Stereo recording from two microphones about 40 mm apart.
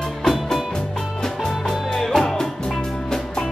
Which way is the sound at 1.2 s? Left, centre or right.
Centre.